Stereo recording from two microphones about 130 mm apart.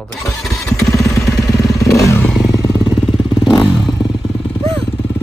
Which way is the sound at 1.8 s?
25° left (ahead or behind).